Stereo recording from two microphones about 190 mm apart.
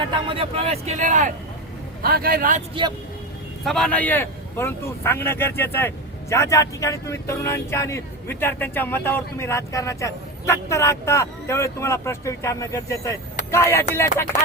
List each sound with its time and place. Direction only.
0.0 s speech: 25° right (ahead or behind)
2.0 s a man's voice: 50° right (ahead or behind)
2.8 s speech: 25° right (ahead or behind)
3.6 s speech: centre (ahead or behind)